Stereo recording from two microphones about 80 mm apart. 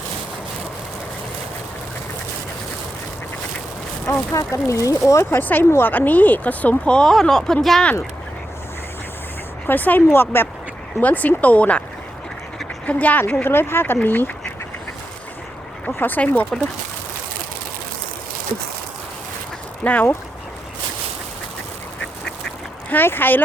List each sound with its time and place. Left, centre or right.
4.4 s speech: left
5.4 s speech: left; by 7.9 s centre
9.6 s speech: left
12.8 s speech: centre
15.9 s speech: left
19.8 s speech: centre
22.9 s speech: left